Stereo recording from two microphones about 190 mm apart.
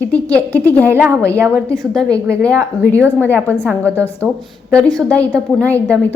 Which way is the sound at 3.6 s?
10° right (ahead or behind).